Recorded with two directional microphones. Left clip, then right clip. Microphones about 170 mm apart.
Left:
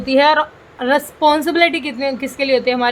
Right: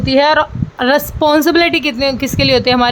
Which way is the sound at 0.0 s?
30° right (ahead or behind).